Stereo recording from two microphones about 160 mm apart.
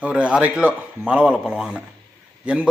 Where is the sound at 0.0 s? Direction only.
10° right (ahead or behind).